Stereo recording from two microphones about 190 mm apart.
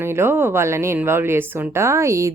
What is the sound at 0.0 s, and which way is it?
Speech, 15° right (ahead or behind).